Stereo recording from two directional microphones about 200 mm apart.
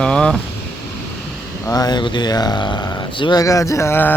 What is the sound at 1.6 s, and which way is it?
A man's voice, 20° left (ahead or behind).